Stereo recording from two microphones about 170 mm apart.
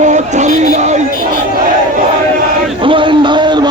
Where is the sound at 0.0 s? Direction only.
45° right (ahead or behind).